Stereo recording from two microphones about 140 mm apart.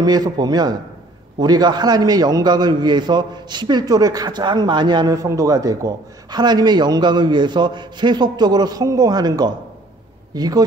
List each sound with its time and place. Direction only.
0.0 s a man's voice: 30° right (ahead or behind)